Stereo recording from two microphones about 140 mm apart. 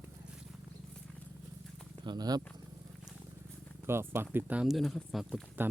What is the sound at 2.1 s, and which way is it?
Speech, 30° right (ahead or behind).